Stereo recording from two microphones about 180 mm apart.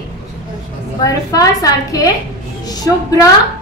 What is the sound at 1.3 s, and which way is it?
Speech, 20° left (ahead or behind).